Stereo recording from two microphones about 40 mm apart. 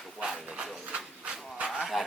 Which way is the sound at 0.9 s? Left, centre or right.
Right.